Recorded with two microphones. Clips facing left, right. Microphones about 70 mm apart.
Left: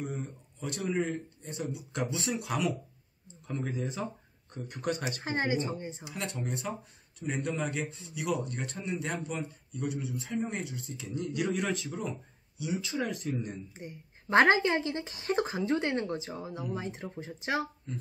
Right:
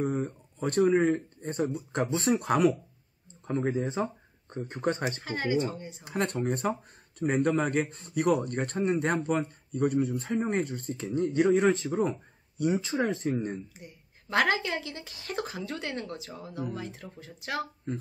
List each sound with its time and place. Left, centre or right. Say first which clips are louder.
0.0 s a man's voice: right 8 dB; right
5.2 s speech: right 1 dB; left
6.0 s a man's voice: right 10 dB; right
12.7 s speech: right 5 dB; right
13.7 s speech: left 5 dB; left
17.9 s a man's voice: right 6 dB; right